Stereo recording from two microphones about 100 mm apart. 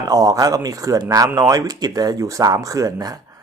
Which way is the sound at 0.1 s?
35° right (ahead or behind).